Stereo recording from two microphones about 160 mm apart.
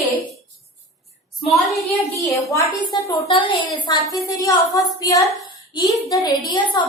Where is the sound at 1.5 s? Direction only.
Centre (ahead or behind).